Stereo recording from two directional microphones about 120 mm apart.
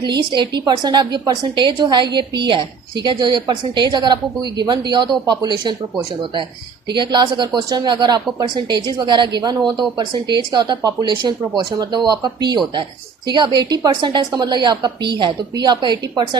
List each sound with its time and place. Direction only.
0.0 s a woman's voice: 40° right (ahead or behind)
6.9 s a woman's voice: 40° right (ahead or behind)